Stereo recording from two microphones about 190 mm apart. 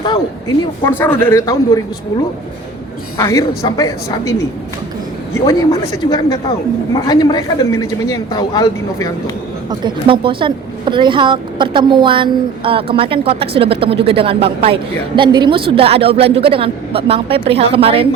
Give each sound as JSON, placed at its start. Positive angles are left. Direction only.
{"t": 0.0, "sound": "a sound", "side_deg": 25}
{"t": 0.9, "sound": "speech", "side_deg": 10}
{"t": 3.2, "sound": "speech", "side_deg": 15}
{"t": 9.6, "sound": "a woman's voice", "side_deg": -25}